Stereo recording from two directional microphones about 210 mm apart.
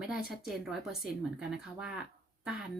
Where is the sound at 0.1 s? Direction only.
Centre (ahead or behind).